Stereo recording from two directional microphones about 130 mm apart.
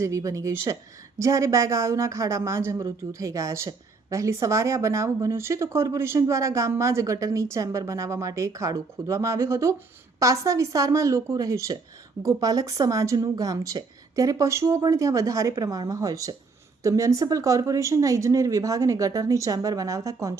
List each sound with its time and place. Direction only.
0.0 s a woman's voice: 25° right (ahead or behind)